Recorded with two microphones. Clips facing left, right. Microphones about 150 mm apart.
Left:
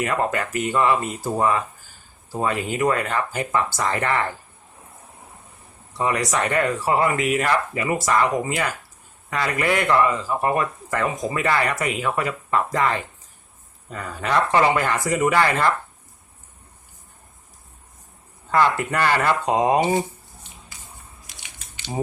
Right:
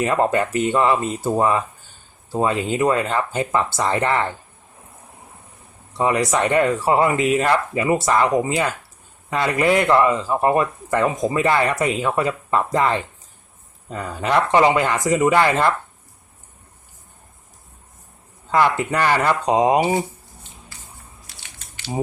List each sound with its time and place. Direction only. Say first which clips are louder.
0.0 s speech: right 4 dB; 30° right (ahead or behind)
6.0 s speech: right 4 dB; 25° right (ahead or behind)
18.5 s speech: right 2 dB; 15° right (ahead or behind)
21.2 s crushing: right 1 dB; 15° left (ahead or behind)